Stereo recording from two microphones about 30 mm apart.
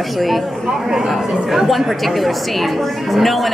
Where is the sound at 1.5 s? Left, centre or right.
Centre.